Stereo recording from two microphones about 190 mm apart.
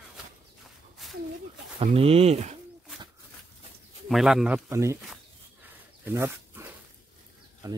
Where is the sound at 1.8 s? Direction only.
30° right (ahead or behind).